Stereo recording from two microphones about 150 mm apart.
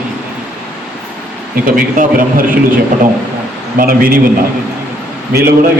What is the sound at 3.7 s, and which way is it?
Speech, 75° right (ahead or behind).